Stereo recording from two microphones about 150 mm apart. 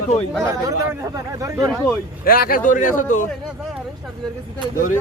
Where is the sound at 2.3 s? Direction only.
75° left (ahead or behind); by 3.3 s 60° left (ahead or behind).